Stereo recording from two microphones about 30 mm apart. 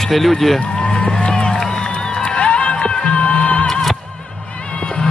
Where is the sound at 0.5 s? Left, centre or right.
Left.